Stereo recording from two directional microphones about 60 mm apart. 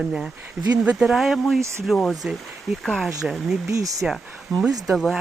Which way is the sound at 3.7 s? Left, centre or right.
Right.